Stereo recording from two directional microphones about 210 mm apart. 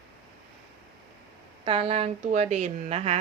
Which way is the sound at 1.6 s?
30° right (ahead or behind).